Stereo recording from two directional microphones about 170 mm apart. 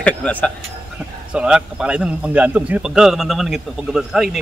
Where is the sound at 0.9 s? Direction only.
5° right (ahead or behind).